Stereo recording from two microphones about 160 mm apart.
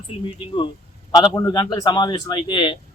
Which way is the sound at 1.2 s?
20° left (ahead or behind).